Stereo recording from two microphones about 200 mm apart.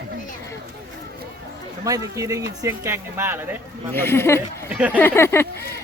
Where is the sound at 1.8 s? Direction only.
15° right (ahead or behind).